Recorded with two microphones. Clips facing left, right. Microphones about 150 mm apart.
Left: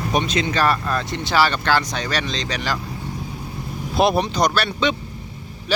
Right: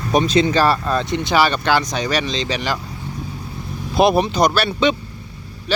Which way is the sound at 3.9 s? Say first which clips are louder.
Right 3 dB; centre (ahead or behind).